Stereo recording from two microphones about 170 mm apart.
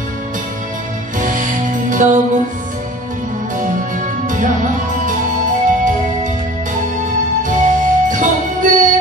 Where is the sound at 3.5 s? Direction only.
50° right (ahead or behind).